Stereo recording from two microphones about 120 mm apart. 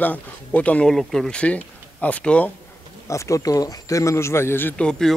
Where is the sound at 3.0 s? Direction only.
25° left (ahead or behind); by 5.1 s 5° left (ahead or behind).